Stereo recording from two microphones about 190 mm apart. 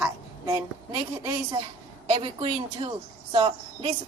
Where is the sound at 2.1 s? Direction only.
30° right (ahead or behind).